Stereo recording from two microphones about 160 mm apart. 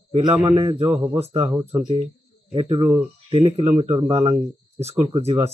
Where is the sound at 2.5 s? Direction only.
40° right (ahead or behind).